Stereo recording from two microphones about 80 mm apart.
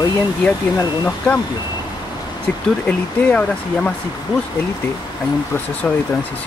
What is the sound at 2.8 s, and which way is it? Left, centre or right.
Speech, centre.